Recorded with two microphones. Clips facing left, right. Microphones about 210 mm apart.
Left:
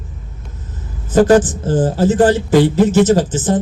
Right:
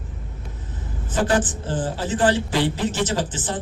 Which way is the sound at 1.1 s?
40° left (ahead or behind).